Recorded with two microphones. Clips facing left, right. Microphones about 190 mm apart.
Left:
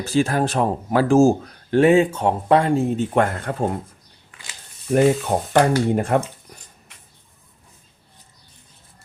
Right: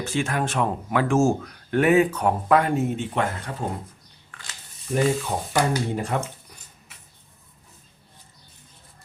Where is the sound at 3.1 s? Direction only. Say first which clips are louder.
Left 6 dB; 55° left (ahead or behind).